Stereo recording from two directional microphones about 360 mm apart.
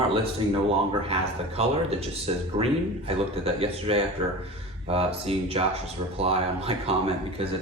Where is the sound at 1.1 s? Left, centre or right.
Centre.